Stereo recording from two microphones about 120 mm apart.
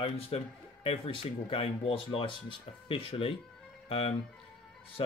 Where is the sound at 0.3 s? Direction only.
55° left (ahead or behind).